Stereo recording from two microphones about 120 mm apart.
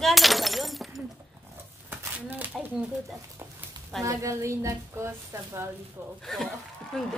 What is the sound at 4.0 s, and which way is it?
A woman's voice, 25° right (ahead or behind).